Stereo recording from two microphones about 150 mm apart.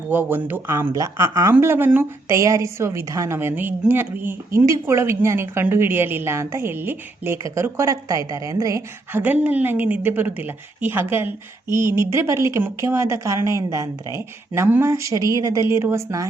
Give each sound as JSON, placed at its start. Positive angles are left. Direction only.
{"t": 0.1, "sound": "a woman's voice", "side_deg": -15}